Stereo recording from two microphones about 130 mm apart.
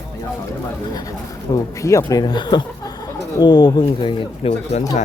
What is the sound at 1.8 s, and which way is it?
Speech, 25° left (ahead or behind).